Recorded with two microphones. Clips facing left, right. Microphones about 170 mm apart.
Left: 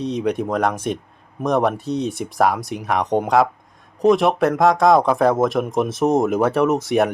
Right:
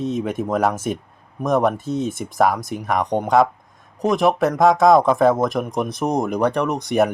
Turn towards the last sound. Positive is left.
turn(degrees=0)  # may be behind; listen again after turning